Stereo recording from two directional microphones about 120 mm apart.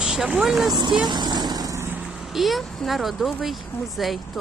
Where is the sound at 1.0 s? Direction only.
35° right (ahead or behind); by 2.0 s 20° right (ahead or behind).